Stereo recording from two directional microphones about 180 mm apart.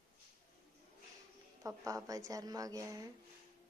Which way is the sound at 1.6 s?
20° right (ahead or behind).